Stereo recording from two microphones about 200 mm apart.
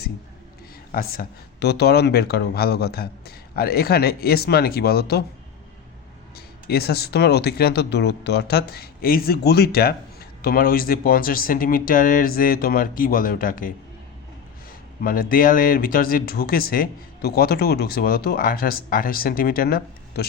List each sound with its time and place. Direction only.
0.9 s speech: 45° left (ahead or behind)
6.3 s speech: 50° left (ahead or behind)
15.0 s speech: 45° left (ahead or behind)